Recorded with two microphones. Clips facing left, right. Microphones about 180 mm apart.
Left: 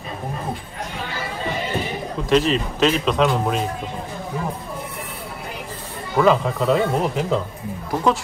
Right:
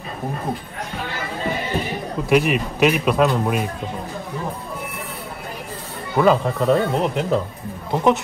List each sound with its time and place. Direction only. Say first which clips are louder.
2.2 s speech: even; 10° right (ahead or behind)
6.1 s speech: even; centre (ahead or behind)
7.9 s speech: right 2 dB; 20° right (ahead or behind)